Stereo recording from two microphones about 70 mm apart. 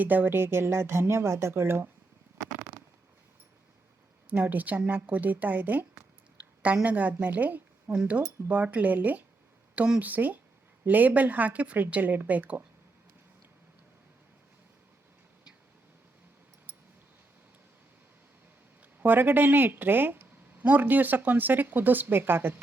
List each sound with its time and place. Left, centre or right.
0.0 s a woman's voice: right
2.7 s a sound: right
4.3 s speech: right
6.8 s a woman's voice: right
18.9 s speech: right